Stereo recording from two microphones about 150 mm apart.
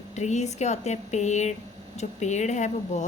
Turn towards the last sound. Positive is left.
turn(degrees=50)  # may be behind; listen again after turning